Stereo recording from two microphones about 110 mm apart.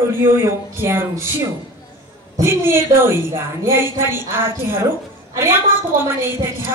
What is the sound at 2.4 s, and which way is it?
A woman's voice, 20° right (ahead or behind).